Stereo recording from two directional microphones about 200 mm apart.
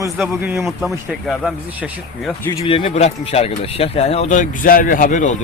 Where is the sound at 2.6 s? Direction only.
25° left (ahead or behind).